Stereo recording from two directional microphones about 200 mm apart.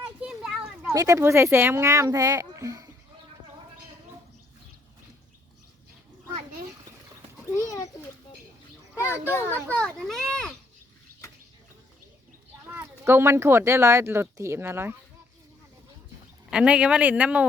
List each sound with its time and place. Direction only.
0.2 s speech: 5° right (ahead or behind)
7.5 s a child's voice: 15° left (ahead or behind)
9.0 s speech: 10° right (ahead or behind)
9.7 s speech: 5° left (ahead or behind)
12.6 s speech: 10° right (ahead or behind)
16.5 s speech: 5° right (ahead or behind)